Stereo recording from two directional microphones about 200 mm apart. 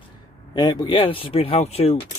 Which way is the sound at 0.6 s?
20° left (ahead or behind).